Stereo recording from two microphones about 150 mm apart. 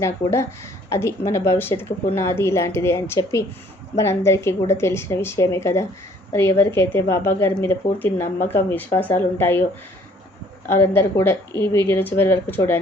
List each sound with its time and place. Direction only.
0.0 s a woman's voice: 20° left (ahead or behind)
10.7 s speech: 15° left (ahead or behind)